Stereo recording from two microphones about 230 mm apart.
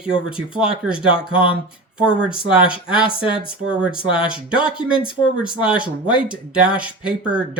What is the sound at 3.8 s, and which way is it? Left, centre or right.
Speech, centre.